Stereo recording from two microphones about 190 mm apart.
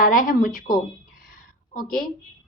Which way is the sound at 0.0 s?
45° left (ahead or behind).